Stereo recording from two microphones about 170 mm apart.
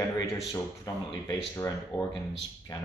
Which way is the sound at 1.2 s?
15° left (ahead or behind).